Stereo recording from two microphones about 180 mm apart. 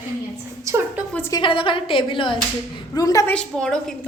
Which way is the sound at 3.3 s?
5° left (ahead or behind).